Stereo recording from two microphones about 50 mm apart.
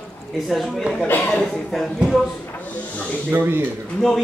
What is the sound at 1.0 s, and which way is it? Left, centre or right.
Speech, left.